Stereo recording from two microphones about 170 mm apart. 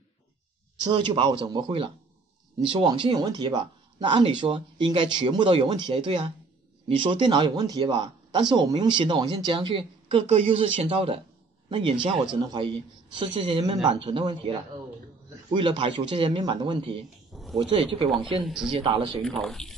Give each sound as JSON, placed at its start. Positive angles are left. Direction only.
{"t": 0.9, "sound": "speech", "side_deg": -30}
{"t": 17.3, "sound": "a sound", "side_deg": 0}
{"t": 17.6, "sound": "speech", "side_deg": -30}
{"t": 18.4, "sound": "speech", "side_deg": -5}
{"t": 18.7, "sound": "speech", "side_deg": -30}
{"t": 19.2, "sound": "speech", "side_deg": 0}